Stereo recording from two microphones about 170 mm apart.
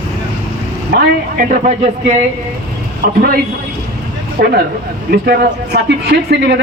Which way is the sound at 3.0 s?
55° right (ahead or behind).